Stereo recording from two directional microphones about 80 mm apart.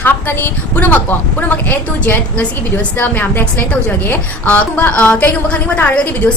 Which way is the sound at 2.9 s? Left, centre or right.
Left.